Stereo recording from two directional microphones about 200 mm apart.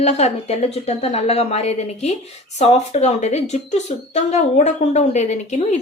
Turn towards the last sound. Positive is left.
turn(degrees=35)  # may be behind; listen again after turning